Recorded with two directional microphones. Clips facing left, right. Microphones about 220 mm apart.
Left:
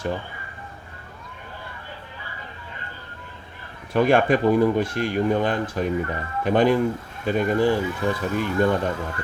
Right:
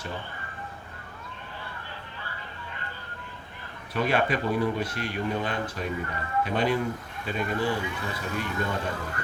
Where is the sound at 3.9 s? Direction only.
50° left (ahead or behind).